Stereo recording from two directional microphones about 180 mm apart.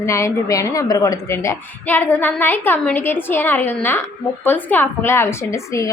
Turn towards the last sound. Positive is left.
turn(degrees=15)  # may be behind; listen again after turning